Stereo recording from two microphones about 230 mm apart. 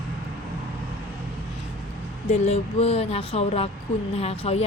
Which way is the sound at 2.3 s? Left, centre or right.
Left.